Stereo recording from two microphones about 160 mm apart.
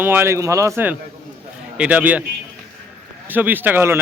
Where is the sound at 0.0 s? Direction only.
15° right (ahead or behind).